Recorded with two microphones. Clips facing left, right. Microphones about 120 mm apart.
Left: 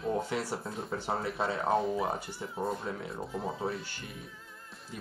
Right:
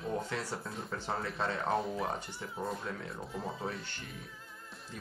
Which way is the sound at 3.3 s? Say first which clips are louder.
Left 4 dB; centre (ahead or behind).